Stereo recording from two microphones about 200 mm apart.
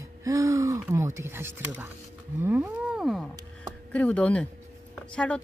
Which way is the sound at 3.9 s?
5° left (ahead or behind).